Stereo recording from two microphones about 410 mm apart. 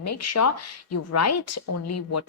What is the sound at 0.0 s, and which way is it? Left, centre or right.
Speech, left.